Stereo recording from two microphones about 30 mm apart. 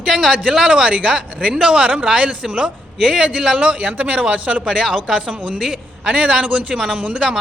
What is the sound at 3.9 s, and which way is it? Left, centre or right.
Speech, right.